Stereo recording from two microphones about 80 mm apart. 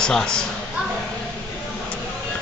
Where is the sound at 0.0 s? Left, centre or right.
Centre.